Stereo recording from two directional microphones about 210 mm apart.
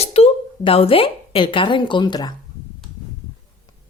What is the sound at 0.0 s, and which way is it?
A woman's voice, 30° left (ahead or behind).